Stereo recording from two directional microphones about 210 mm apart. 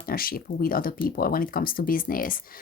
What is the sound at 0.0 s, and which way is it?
Speech, 45° left (ahead or behind).